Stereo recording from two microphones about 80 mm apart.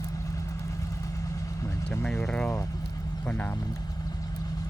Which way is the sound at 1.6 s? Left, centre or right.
Left.